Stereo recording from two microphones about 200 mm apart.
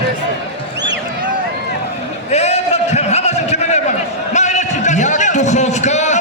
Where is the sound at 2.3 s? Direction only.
30° left (ahead or behind).